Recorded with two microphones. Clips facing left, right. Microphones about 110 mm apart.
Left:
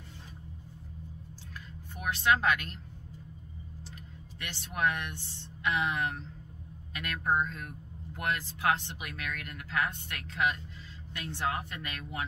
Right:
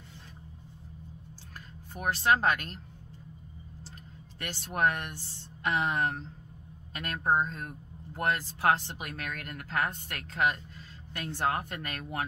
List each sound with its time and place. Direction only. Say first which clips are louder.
2.0 s speech: right 2 dB; 40° right (ahead or behind)
4.4 s speech: right 3 dB; 40° right (ahead or behind)